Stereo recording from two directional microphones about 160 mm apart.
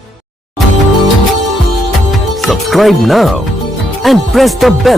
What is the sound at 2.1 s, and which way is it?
Speech, centre (ahead or behind).